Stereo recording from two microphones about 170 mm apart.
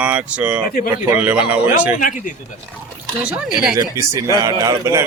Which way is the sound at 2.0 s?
50° left (ahead or behind).